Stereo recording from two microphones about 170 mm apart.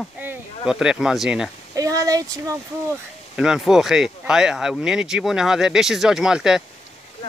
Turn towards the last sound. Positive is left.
turn(degrees=-5)  # may be behind; listen again after turning